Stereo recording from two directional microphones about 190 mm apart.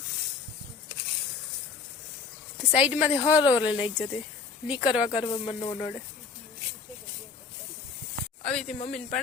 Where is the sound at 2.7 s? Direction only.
5° right (ahead or behind).